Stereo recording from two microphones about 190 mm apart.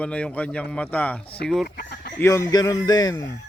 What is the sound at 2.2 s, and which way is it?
A man's voice, 15° left (ahead or behind).